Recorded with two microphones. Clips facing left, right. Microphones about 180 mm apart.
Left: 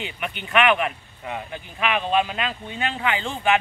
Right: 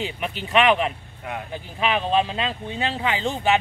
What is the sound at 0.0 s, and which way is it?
Speech, 35° right (ahead or behind).